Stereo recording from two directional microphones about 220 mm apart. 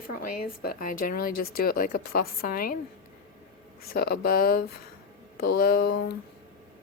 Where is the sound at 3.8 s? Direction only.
45° left (ahead or behind).